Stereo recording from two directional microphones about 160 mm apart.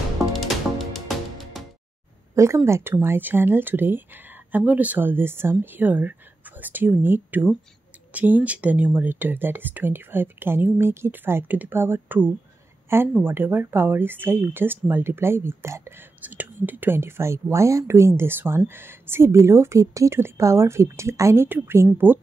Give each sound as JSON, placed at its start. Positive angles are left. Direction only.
{"t": 0.3, "sound": "music", "side_deg": 0}
{"t": 2.3, "sound": "speech", "side_deg": -20}